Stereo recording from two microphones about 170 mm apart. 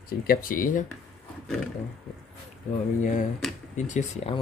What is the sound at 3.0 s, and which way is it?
Speech, 50° left (ahead or behind).